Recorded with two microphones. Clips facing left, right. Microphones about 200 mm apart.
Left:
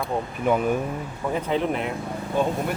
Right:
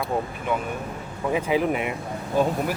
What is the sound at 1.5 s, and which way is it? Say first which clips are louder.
Speech: right 1 dB; 5° right (ahead or behind).